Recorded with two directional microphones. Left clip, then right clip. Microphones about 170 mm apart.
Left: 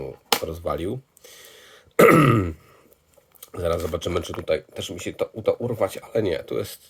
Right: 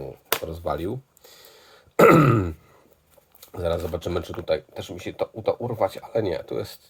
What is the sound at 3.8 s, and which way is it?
Speech, 20° left (ahead or behind).